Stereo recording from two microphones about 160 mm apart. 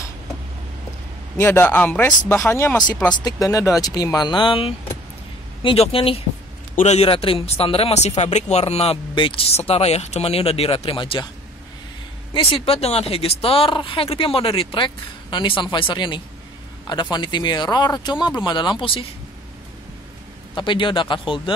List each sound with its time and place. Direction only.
1.4 s a woman's voice: 15° left (ahead or behind); by 11.2 s 30° left (ahead or behind)
12.4 s a woman's voice: 35° left (ahead or behind)
20.5 s a woman's voice: 30° left (ahead or behind)